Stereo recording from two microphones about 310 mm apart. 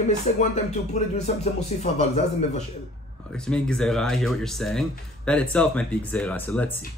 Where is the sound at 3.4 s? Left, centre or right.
Centre.